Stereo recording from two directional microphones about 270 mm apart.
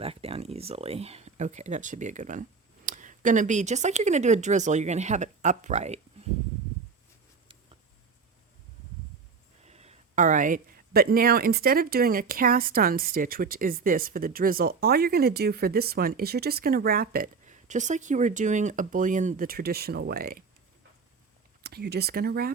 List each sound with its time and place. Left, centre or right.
0.0 s speech: right
9.6 s speech: right
21.6 s speech: right